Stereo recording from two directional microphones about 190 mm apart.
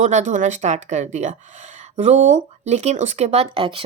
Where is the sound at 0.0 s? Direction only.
40° right (ahead or behind).